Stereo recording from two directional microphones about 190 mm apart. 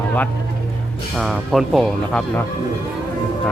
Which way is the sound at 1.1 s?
Centre (ahead or behind).